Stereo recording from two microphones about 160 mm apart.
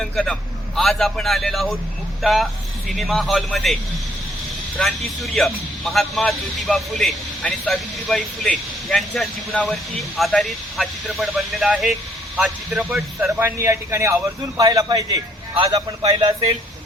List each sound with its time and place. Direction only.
0.0 s a man's voice: 5° left (ahead or behind)
4.8 s a man's voice: centre (ahead or behind)
13.1 s a man's voice: 15° right (ahead or behind)